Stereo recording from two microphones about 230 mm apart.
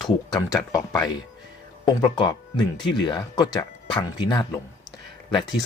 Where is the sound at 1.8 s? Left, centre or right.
Centre.